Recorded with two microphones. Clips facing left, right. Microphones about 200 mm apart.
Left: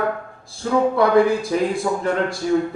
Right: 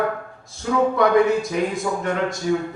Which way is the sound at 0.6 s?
40° left (ahead or behind).